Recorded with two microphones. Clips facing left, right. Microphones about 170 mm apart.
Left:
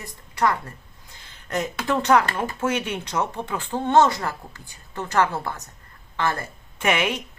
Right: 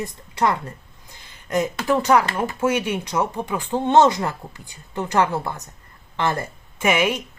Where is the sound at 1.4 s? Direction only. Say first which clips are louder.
Right 4 dB; 10° right (ahead or behind).